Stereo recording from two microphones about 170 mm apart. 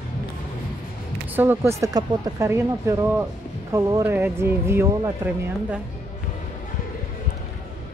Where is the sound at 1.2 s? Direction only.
10° right (ahead or behind).